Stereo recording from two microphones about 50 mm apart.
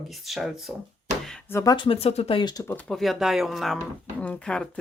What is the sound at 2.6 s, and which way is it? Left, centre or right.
Speech, left.